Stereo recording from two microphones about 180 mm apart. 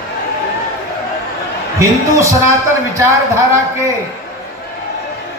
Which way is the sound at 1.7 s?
15° right (ahead or behind).